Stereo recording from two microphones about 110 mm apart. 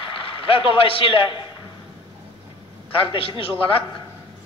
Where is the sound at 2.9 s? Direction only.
55° left (ahead or behind).